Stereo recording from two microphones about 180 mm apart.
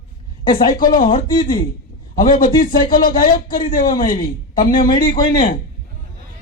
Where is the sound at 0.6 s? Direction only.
50° left (ahead or behind).